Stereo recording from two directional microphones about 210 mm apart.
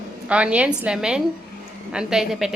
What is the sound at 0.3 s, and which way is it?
A woman's voice, 5° right (ahead or behind).